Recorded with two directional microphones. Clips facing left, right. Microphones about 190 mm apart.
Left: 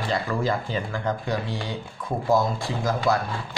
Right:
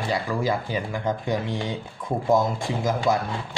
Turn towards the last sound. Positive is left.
turn(degrees=-20)  # may be behind; listen again after turning